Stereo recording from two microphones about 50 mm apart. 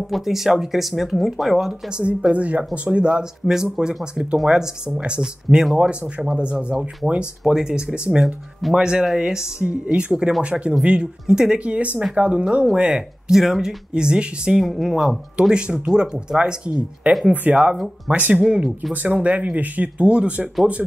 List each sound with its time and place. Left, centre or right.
0.1 s speech: centre
2.0 s speech: right
5.2 s speech: centre
5.8 s speech: right
14.6 s speech: centre
15.4 s speech: centre
17.3 s speech: right
18.4 s speech: centre
19.0 s speech: right